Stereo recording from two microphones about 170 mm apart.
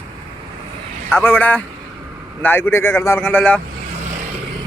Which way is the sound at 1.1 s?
10° left (ahead or behind).